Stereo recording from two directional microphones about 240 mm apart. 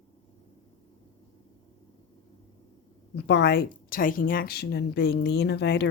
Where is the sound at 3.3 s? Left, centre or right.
Left.